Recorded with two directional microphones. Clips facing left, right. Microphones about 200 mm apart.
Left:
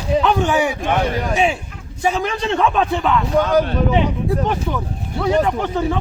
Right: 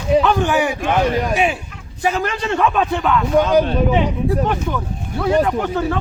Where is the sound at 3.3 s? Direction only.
15° right (ahead or behind).